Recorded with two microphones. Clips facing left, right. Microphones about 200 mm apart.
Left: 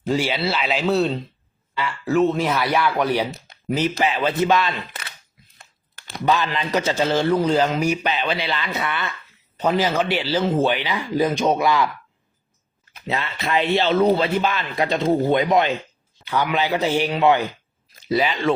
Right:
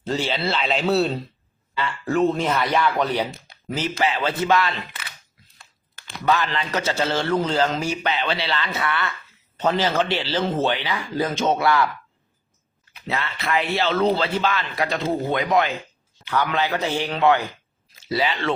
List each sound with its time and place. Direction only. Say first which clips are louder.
0.0 s a man's voice: left 3 dB; 10° left (ahead or behind)
6.2 s a man's voice: left 1 dB; 15° left (ahead or behind)
13.1 s a man's voice: left 1 dB; 20° left (ahead or behind)